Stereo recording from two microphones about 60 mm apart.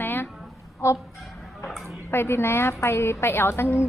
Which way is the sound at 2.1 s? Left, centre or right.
Left.